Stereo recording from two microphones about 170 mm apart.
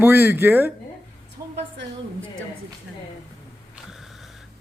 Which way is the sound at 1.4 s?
20° right (ahead or behind).